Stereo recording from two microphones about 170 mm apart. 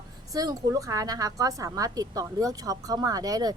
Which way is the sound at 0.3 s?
20° right (ahead or behind).